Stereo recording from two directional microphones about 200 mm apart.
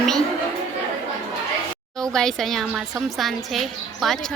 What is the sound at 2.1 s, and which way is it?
A woman's voice, centre (ahead or behind).